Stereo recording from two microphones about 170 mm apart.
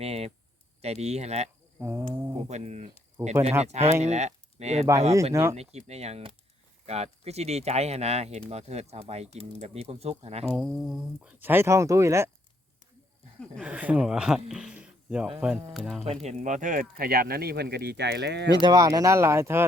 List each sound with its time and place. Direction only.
0.0 s speech: 35° right (ahead or behind)
1.8 s speech: 15° right (ahead or behind)
2.5 s speech: 40° right (ahead or behind)
3.2 s speech: 15° right (ahead or behind)
3.6 s speech: 40° right (ahead or behind)
5.3 s speech: 15° right (ahead or behind)
5.5 s speech: 40° right (ahead or behind)
10.5 s speech: 5° right (ahead or behind)
13.6 s speech: 10° right (ahead or behind)
16.2 s speech: 45° right (ahead or behind); by 18.5 s 90° right
18.6 s speech: 20° right (ahead or behind)